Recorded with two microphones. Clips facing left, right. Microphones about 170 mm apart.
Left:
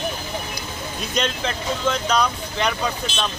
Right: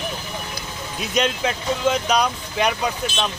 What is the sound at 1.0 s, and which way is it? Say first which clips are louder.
Speech: right 3 dB; 10° right (ahead or behind).